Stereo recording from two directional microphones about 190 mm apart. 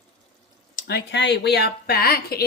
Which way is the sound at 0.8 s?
55° left (ahead or behind).